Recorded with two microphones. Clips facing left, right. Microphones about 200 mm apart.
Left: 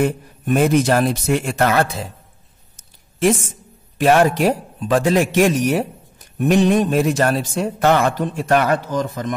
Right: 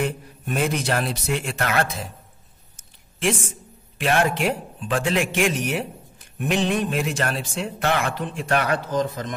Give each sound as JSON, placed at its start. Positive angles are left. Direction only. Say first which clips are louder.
{"t": 0.0, "sound": "speech", "louder": "left 7 dB", "side_deg": 45}
{"t": 4.0, "sound": "speech", "louder": "left 7 dB", "side_deg": 40}